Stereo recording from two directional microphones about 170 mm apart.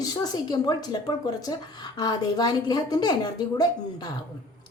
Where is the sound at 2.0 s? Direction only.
25° left (ahead or behind).